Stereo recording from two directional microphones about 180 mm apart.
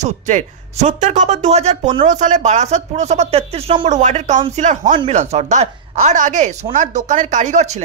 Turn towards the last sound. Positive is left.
turn(degrees=-40)  # may be behind; listen again after turning